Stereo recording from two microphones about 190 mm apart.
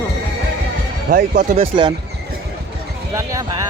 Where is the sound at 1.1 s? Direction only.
45° right (ahead or behind).